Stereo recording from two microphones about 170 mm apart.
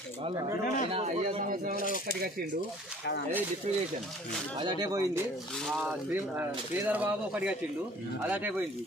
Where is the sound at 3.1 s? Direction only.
90° left.